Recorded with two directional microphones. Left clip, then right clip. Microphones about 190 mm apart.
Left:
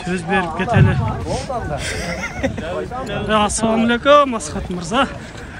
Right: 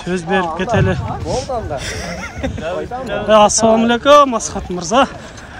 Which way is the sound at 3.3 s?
15° right (ahead or behind).